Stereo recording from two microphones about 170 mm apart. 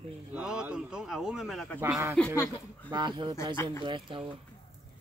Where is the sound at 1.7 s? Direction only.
10° right (ahead or behind).